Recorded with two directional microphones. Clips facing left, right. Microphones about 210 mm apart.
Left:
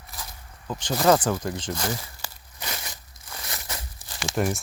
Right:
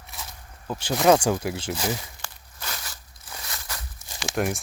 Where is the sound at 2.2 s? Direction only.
15° left (ahead or behind).